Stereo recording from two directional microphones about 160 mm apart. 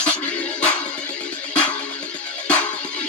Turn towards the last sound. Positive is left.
turn(degrees=10)  # may be behind; listen again after turning